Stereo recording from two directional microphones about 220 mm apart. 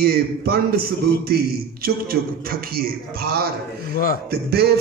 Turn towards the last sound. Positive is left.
turn(degrees=-45)  # may be behind; listen again after turning